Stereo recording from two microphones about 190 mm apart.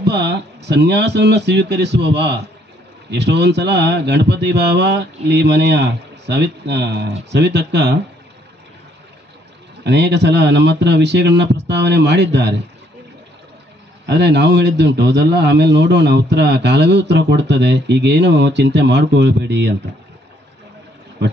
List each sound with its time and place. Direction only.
0.0 s a man's voice: 65° right (ahead or behind)
9.8 s a man's voice: 65° right (ahead or behind)
14.0 s a man's voice: 65° right (ahead or behind)
21.2 s speech: 60° right (ahead or behind)